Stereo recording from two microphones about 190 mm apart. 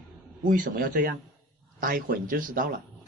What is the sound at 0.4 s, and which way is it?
Speech, 45° right (ahead or behind).